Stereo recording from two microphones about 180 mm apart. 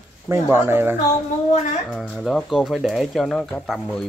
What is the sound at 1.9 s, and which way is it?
Speech, centre (ahead or behind).